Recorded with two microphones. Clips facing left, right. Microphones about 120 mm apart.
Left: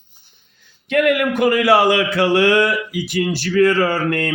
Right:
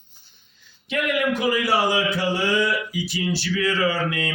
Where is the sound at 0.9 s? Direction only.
55° left (ahead or behind).